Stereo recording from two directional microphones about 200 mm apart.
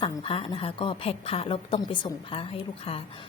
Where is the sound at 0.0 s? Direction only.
25° left (ahead or behind).